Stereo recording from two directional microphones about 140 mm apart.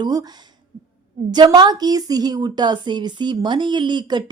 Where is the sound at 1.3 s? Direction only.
30° right (ahead or behind).